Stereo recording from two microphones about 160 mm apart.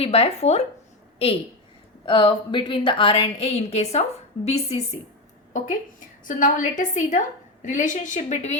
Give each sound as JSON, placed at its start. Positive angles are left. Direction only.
{"t": 0.0, "sound": "a woman's voice", "side_deg": 40}
{"t": 6.2, "sound": "a woman's voice", "side_deg": 55}